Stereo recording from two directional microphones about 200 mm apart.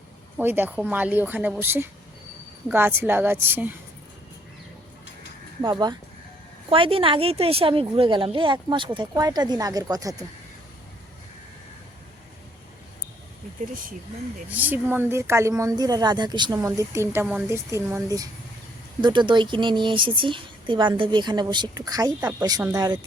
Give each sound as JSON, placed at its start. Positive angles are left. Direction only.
{"t": 0.3, "sound": "speech", "side_deg": -10}
{"t": 6.7, "sound": "speech", "side_deg": -25}
{"t": 14.5, "sound": "speech", "side_deg": -10}